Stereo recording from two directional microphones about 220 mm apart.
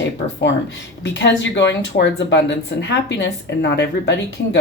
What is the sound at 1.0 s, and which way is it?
Speech, 55° left (ahead or behind).